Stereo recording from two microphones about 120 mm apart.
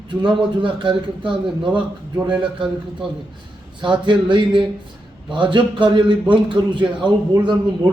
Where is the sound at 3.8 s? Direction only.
40° right (ahead or behind).